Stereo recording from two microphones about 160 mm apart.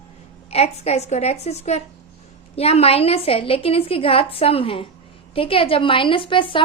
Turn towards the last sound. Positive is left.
turn(degrees=30)  # may be behind; listen again after turning